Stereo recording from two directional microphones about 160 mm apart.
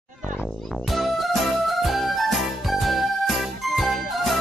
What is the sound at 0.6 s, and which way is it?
Music, centre (ahead or behind).